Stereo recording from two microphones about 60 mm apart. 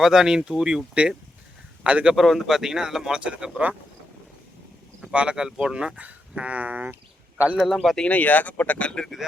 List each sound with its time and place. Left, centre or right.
0.0 s speech: centre
1.8 s speech: right
2.1 s speech: centre; by 3.8 s right
5.1 s speech: centre
7.5 s a man's voice: centre
8.0 s speech: left